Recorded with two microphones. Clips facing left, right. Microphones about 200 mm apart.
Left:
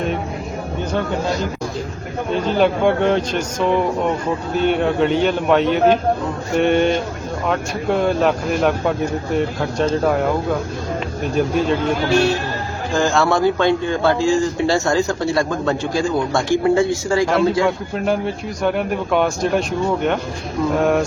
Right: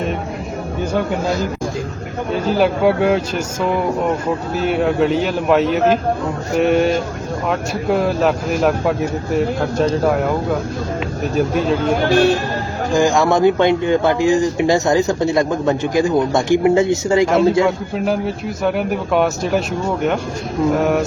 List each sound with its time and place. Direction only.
2.3 s a man's voice: 5° right (ahead or behind)
12.9 s speech: 15° right (ahead or behind)
17.7 s a man's voice: centre (ahead or behind)